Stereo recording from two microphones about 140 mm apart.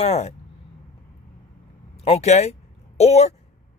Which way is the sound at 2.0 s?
55° left (ahead or behind).